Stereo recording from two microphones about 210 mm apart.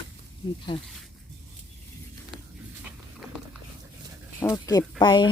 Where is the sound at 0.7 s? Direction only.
20° left (ahead or behind).